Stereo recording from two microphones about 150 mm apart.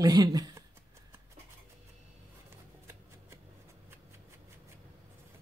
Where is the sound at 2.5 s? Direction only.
15° right (ahead or behind).